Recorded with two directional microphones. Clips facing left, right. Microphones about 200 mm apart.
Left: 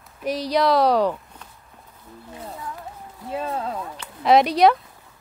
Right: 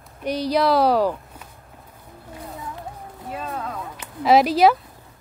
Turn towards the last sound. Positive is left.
turn(degrees=0)  # may be behind; listen again after turning